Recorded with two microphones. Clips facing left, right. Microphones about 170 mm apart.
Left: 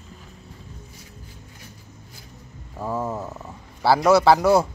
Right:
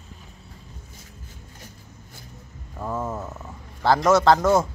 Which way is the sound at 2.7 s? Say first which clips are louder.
Left 2 dB; 10° left (ahead or behind).